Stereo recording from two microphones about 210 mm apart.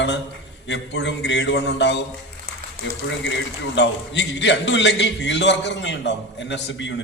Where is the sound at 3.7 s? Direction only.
55° left (ahead or behind).